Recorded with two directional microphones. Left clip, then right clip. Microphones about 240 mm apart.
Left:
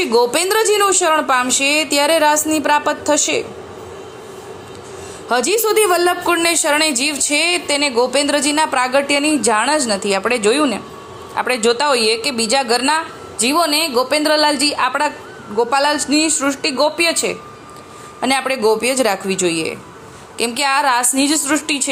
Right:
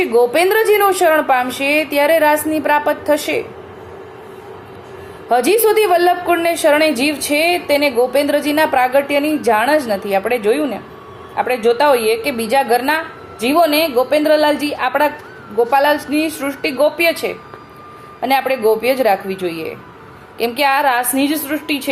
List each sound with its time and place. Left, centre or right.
0.0 s a woman's voice: centre
5.3 s a woman's voice: centre